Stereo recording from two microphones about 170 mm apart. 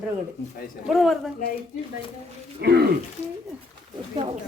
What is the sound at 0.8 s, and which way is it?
Speech, centre (ahead or behind).